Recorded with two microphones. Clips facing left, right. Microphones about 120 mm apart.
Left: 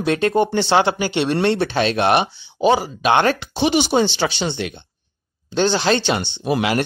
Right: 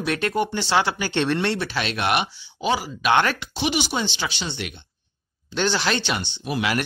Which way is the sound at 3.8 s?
60° left (ahead or behind).